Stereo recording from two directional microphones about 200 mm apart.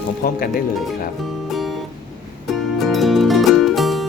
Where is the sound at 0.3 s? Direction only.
45° left (ahead or behind).